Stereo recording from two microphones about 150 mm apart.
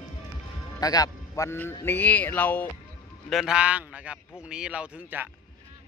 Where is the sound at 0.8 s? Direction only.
25° left (ahead or behind).